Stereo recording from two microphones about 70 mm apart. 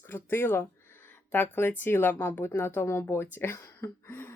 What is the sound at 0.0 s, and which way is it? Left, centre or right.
Speech, left.